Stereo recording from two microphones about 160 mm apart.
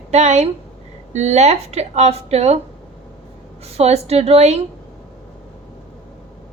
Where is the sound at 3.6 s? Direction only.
40° right (ahead or behind).